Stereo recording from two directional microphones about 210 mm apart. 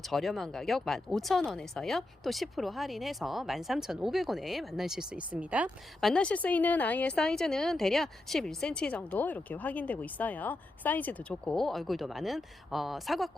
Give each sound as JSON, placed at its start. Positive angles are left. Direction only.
{"t": 0.0, "sound": "speech", "side_deg": 0}